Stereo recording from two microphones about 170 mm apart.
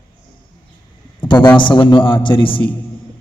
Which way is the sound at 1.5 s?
30° left (ahead or behind).